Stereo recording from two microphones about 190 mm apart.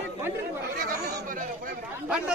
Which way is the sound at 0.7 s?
45° right (ahead or behind).